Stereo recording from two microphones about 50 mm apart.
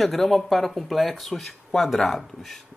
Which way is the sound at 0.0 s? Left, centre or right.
Centre.